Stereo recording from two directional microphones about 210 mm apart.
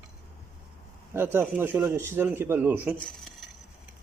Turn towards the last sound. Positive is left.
turn(degrees=0)  # may be behind; listen again after turning